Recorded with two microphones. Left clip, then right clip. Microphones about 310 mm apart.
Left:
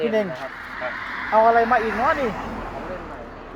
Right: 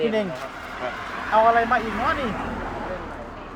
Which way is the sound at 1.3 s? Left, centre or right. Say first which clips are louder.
Left 2 dB; left.